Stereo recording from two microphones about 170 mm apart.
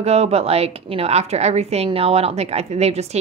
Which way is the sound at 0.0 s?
40° right (ahead or behind).